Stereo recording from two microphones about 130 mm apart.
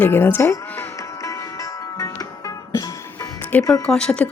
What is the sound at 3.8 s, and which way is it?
Speech, 5° left (ahead or behind).